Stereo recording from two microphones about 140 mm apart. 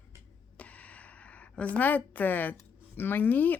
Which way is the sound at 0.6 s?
10° left (ahead or behind).